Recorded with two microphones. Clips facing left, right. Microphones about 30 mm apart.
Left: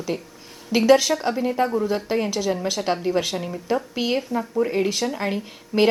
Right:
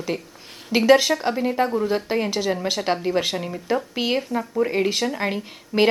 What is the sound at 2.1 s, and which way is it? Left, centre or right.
A woman's voice, centre.